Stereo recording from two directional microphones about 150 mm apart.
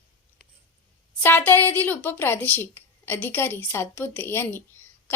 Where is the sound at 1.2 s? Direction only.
15° left (ahead or behind).